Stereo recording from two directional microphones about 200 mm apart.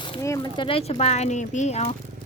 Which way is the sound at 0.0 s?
20° left (ahead or behind).